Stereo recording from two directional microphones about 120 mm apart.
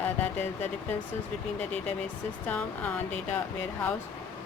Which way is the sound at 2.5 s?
15° left (ahead or behind).